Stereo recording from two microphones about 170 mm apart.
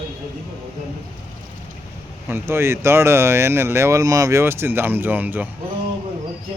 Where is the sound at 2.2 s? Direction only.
15° right (ahead or behind).